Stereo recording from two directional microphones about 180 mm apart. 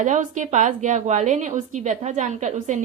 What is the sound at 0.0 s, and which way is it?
A woman's voice, 45° right (ahead or behind).